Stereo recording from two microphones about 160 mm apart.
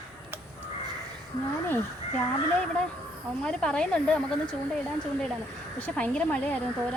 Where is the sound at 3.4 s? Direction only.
5° left (ahead or behind).